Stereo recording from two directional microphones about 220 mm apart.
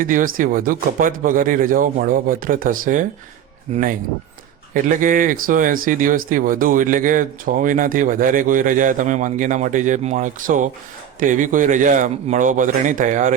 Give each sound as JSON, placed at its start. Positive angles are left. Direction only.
{"t": 0.0, "sound": "speech", "side_deg": -40}